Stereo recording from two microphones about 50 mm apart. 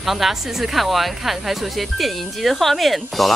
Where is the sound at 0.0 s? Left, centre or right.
Centre.